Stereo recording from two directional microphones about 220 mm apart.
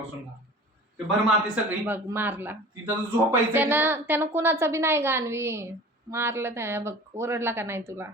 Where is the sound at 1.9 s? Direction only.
10° right (ahead or behind).